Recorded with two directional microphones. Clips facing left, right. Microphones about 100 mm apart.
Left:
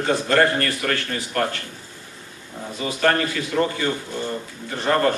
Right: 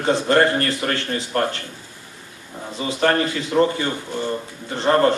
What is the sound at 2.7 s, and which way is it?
Speech, 25° right (ahead or behind).